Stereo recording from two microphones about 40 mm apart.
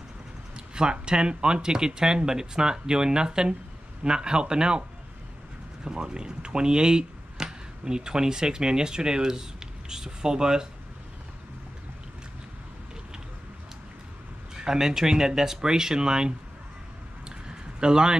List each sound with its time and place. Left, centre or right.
0.7 s speech: right
5.9 s speech: right
14.6 s speech: centre
17.5 s a sound: right